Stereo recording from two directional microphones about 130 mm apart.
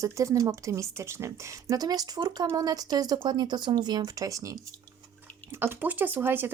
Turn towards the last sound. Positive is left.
turn(degrees=-15)  # may be behind; listen again after turning